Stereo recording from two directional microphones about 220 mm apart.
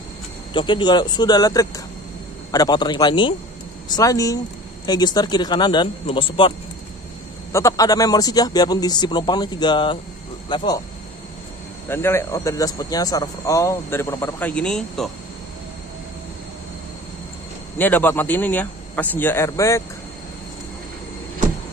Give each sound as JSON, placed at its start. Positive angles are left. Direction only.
{"t": 0.5, "sound": "a man's voice", "side_deg": 20}
{"t": 7.5, "sound": "a man's voice", "side_deg": 15}
{"t": 11.9, "sound": "speech", "side_deg": 10}
{"t": 17.7, "sound": "speech", "side_deg": 10}